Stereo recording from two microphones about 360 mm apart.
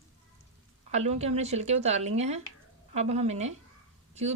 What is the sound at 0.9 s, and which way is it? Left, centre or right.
A woman's voice, centre.